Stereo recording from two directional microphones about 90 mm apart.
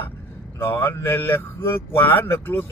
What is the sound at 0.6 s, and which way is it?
Speech, 25° left (ahead or behind).